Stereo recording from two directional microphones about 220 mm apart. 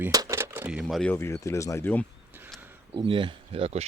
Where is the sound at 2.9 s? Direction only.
25° right (ahead or behind).